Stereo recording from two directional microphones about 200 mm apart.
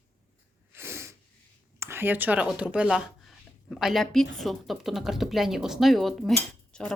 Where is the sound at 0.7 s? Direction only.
10° right (ahead or behind).